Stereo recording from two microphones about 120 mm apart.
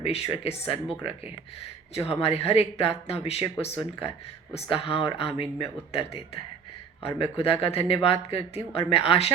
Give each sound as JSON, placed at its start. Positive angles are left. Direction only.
{"t": 0.0, "sound": "speech", "side_deg": 55}
{"t": 2.0, "sound": "speech", "side_deg": 55}
{"t": 4.5, "sound": "speech", "side_deg": 50}